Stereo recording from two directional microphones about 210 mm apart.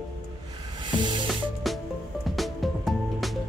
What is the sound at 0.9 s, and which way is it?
Music, 25° right (ahead or behind).